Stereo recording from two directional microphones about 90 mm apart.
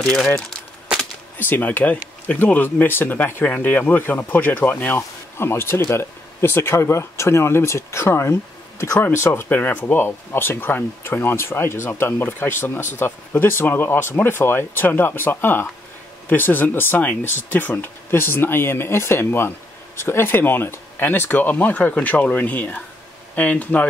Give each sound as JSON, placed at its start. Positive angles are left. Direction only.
{"t": 0.0, "sound": "speech", "side_deg": 10}
{"t": 1.4, "sound": "speech", "side_deg": 20}